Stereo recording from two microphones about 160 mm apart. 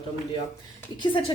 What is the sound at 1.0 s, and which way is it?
Speech, 30° left (ahead or behind).